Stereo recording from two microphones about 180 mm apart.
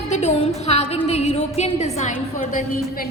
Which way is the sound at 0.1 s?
40° left (ahead or behind).